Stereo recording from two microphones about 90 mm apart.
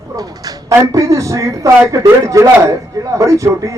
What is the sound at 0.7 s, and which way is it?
A man's voice, 35° right (ahead or behind).